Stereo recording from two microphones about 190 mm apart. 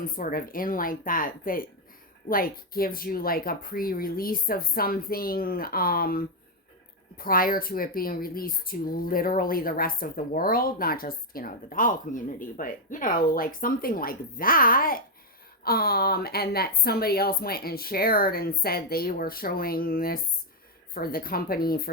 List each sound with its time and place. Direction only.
0.0 s speech: 50° left (ahead or behind)